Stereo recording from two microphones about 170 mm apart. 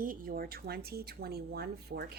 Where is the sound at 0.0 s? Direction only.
55° right (ahead or behind).